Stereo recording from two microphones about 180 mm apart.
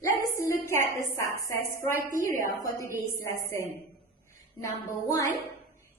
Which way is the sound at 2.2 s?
50° right (ahead or behind).